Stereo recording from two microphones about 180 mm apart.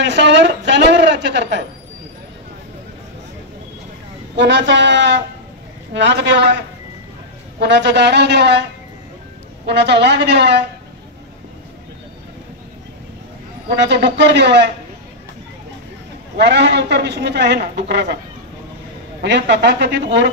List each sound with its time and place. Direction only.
0.0 s a man's voice: 75° right (ahead or behind)
4.4 s speech: 80° right
7.6 s a man's voice: 75° right (ahead or behind)
9.7 s a man's voice: 70° right (ahead or behind)
13.7 s a man's voice: 70° right (ahead or behind)
16.3 s a man's voice: 70° right (ahead or behind)
19.2 s a man's voice: 75° right (ahead or behind)